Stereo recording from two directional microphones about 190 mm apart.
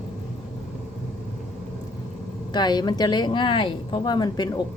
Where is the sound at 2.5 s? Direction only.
20° left (ahead or behind).